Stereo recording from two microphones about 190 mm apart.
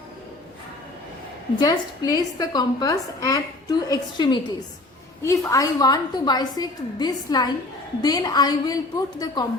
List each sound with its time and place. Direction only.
1.5 s a woman's voice: 20° left (ahead or behind)